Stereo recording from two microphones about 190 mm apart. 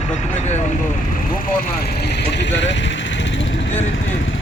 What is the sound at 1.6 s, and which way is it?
Speech, 55° left (ahead or behind).